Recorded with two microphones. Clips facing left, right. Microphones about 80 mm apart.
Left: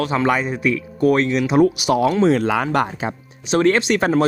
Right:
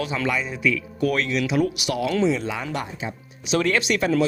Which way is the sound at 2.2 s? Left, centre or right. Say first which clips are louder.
Left 7 dB; left.